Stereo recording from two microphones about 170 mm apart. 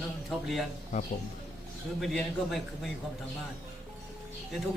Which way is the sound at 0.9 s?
45° left (ahead or behind).